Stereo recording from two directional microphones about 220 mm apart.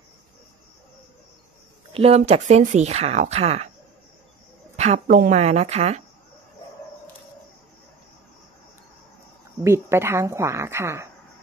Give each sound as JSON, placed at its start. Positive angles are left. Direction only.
{"t": 1.9, "sound": "speech", "side_deg": -25}
{"t": 4.7, "sound": "speech", "side_deg": -30}
{"t": 9.6, "sound": "a woman's voice", "side_deg": -10}